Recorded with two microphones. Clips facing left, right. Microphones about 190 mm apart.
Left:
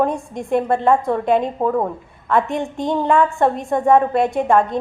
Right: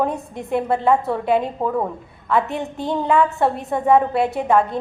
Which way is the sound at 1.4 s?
15° left (ahead or behind).